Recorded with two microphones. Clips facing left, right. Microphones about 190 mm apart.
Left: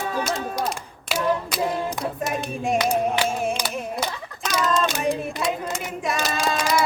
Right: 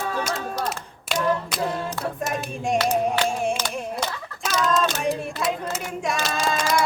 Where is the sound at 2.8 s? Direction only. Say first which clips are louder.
Even; centre (ahead or behind).